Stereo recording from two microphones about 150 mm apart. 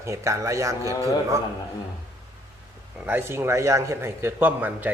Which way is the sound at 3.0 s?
15° right (ahead or behind).